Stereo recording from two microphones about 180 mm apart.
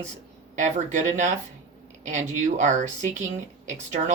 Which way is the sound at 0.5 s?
40° right (ahead or behind).